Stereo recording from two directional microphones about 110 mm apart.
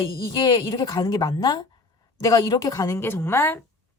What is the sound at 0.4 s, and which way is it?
A woman's voice, 35° left (ahead or behind).